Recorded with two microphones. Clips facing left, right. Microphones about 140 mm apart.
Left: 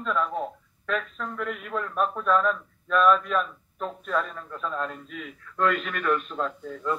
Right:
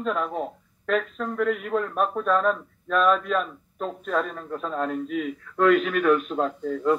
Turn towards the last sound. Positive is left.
turn(degrees=-45)  # may be behind; listen again after turning